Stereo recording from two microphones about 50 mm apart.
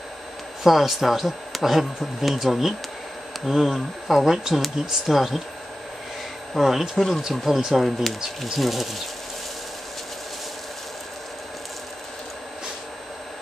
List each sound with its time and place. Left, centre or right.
0.7 s speech: centre
6.5 s speech: centre